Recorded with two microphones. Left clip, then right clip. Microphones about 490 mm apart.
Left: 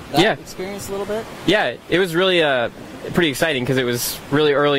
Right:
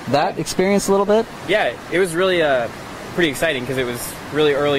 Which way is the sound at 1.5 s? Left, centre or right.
Left.